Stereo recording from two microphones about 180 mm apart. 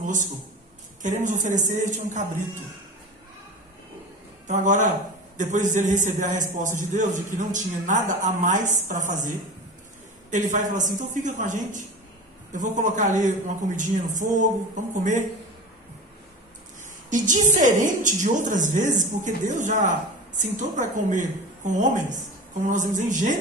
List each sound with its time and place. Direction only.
0.0 s a sound: 45° right (ahead or behind)
1.0 s a man's voice: 45° right (ahead or behind)
4.5 s a man's voice: 45° right (ahead or behind)
10.3 s a man's voice: 45° right (ahead or behind)
17.1 s a man's voice: 45° right (ahead or behind)